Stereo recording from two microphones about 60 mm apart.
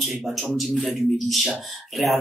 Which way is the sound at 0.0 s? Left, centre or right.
Centre.